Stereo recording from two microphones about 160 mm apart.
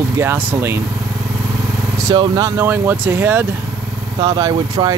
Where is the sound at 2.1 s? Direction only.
25° right (ahead or behind).